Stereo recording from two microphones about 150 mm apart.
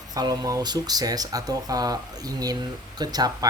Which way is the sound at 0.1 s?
25° right (ahead or behind).